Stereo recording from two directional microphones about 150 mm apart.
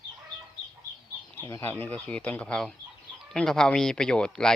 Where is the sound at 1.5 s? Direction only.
20° left (ahead or behind).